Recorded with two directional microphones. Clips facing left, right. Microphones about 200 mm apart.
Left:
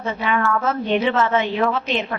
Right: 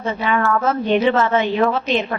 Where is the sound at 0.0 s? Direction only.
35° right (ahead or behind).